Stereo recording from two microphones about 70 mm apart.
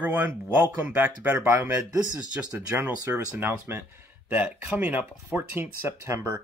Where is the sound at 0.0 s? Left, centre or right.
Right.